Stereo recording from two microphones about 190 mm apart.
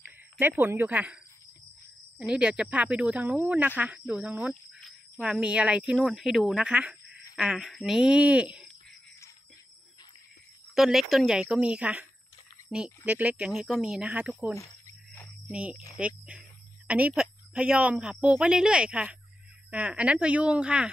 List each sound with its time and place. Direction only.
0.0 s speech: 10° right (ahead or behind)
10.7 s speech: centre (ahead or behind)
14.5 s music: 15° left (ahead or behind)
15.5 s speech: 5° right (ahead or behind)